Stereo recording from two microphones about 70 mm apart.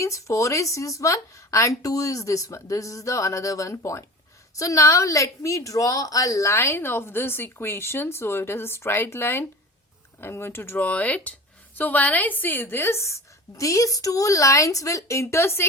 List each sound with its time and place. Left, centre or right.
0.0 s a woman's voice: left
13.6 s a woman's voice: left